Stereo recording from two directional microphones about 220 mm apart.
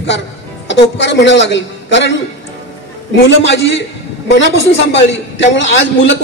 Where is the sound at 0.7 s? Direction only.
55° left (ahead or behind).